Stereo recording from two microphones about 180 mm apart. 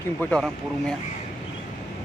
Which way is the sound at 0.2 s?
5° left (ahead or behind).